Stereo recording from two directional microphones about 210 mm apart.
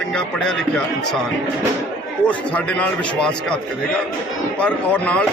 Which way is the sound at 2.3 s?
5° left (ahead or behind).